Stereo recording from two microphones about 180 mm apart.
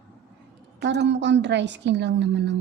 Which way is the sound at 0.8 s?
75° right (ahead or behind).